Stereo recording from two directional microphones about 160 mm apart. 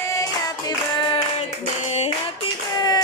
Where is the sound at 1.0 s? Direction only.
30° left (ahead or behind).